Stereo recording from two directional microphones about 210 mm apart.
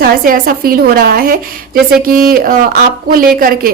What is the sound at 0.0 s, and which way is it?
A woman's voice, 45° right (ahead or behind).